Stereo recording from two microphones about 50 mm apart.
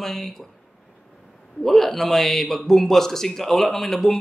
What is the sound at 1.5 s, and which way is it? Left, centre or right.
Speech, centre.